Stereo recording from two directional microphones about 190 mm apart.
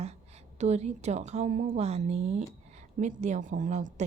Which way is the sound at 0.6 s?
35° right (ahead or behind).